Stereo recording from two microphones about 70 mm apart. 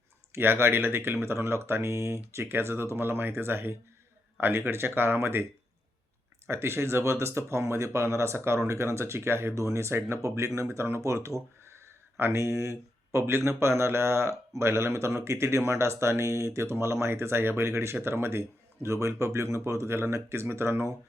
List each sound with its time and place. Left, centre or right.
0.3 s speech: right
6.5 s speech: right